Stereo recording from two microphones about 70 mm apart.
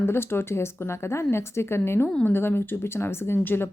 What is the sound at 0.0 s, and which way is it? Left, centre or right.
A woman's voice, left.